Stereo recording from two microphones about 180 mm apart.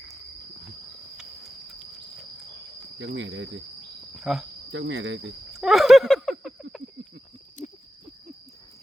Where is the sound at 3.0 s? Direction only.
90° right.